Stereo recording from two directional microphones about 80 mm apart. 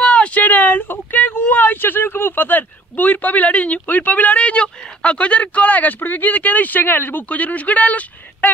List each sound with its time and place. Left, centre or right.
0.0 s speech: centre